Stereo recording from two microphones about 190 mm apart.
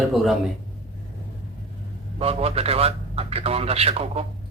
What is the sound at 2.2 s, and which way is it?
A man's voice, 30° right (ahead or behind).